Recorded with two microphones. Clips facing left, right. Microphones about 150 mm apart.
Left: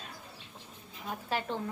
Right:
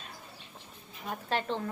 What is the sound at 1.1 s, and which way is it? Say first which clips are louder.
Speech: right 2 dB; 10° left (ahead or behind).